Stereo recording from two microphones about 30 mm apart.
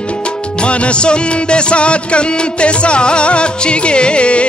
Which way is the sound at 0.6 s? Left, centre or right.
Left.